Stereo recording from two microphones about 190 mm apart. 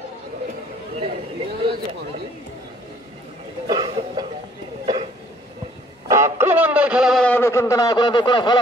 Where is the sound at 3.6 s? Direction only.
20° right (ahead or behind).